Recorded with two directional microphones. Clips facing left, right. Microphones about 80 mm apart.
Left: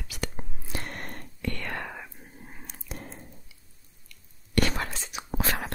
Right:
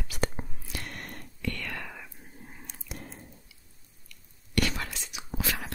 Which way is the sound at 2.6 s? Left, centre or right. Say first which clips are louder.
Left 2 dB; left.